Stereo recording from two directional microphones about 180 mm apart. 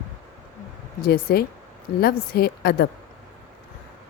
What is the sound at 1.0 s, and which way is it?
A woman's voice, 60° left (ahead or behind).